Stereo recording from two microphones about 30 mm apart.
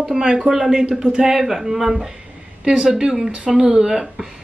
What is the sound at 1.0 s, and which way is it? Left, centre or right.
Speech, right.